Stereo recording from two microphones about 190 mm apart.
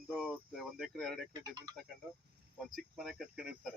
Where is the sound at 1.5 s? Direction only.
20° right (ahead or behind).